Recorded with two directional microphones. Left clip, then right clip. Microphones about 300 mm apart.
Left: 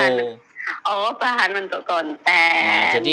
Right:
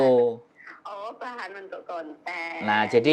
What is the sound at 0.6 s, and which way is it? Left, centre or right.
Speech, left.